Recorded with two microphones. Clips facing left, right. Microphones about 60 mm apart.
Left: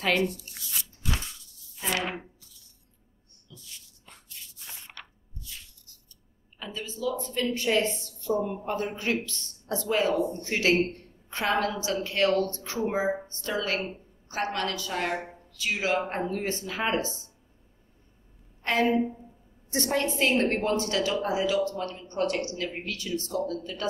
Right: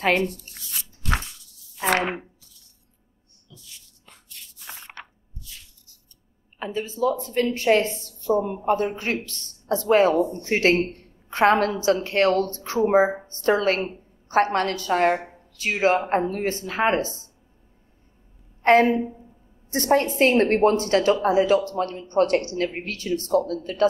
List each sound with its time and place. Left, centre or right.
1.8 s speech: right
4.0 s biting: right
6.6 s a woman's voice: right
18.6 s a woman's voice: right